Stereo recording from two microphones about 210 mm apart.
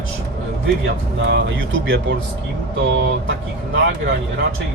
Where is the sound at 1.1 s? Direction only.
60° right (ahead or behind).